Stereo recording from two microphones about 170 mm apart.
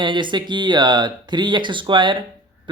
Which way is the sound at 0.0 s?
30° right (ahead or behind).